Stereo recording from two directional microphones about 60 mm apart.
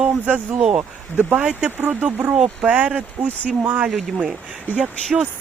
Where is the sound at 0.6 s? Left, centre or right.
Centre.